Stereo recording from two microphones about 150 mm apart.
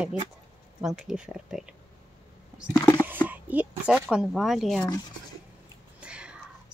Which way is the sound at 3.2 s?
10° right (ahead or behind).